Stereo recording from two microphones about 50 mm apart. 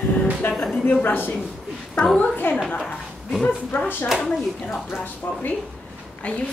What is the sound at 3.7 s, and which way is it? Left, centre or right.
Speech, left.